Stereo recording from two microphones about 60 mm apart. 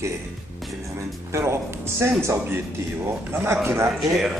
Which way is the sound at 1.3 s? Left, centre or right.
Right.